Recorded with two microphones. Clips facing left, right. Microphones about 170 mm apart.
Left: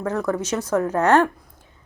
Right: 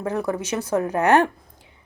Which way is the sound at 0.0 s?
15° right (ahead or behind).